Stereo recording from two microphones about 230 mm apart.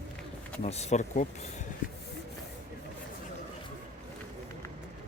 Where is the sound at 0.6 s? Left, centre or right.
Left.